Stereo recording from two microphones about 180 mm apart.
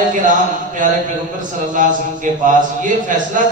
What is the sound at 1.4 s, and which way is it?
A man's voice, 45° right (ahead or behind).